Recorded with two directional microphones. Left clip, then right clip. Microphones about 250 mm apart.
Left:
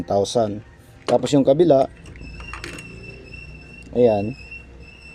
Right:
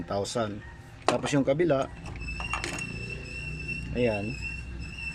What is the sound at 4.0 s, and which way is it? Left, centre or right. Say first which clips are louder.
Speech: left 12 dB; centre.